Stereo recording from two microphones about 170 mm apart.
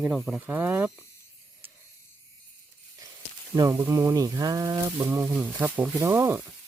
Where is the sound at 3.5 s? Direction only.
20° right (ahead or behind).